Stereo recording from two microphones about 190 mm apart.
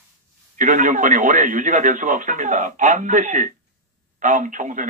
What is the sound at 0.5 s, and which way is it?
Speech, 40° right (ahead or behind).